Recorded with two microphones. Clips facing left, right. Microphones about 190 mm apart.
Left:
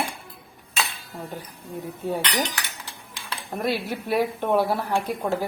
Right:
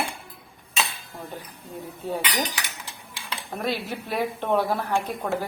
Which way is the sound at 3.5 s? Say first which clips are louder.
Left 3 dB; 10° left (ahead or behind).